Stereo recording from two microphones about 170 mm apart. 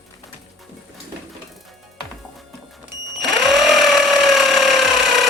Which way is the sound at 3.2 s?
Centre (ahead or behind).